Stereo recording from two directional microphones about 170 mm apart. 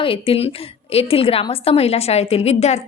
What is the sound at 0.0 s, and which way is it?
A woman's voice, 35° left (ahead or behind).